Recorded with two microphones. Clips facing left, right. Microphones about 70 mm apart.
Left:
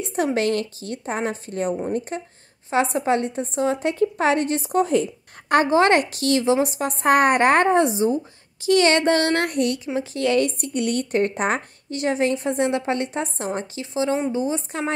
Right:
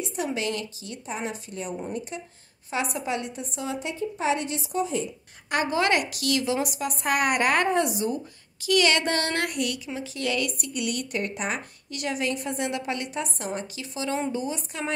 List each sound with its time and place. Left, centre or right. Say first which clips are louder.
0.0 s a woman's voice: left 7 dB; left
3.9 s a woman's voice: left 7 dB; left
5.5 s a woman's voice: left 7 dB; left